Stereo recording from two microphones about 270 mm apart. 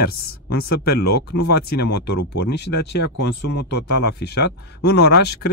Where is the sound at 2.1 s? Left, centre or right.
Left.